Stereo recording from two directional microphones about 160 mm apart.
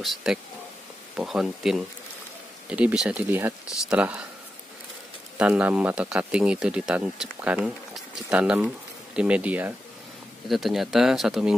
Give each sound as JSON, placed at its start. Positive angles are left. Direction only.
{"t": 0.0, "sound": "speech", "side_deg": 0}
{"t": 5.4, "sound": "speech", "side_deg": -5}